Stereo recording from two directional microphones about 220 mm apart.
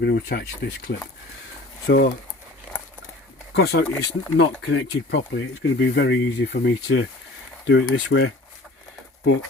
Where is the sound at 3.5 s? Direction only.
50° left (ahead or behind).